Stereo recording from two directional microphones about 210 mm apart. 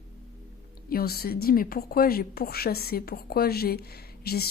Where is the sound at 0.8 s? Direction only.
45° left (ahead or behind).